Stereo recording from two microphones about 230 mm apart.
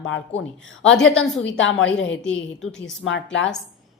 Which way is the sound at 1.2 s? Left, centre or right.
Left.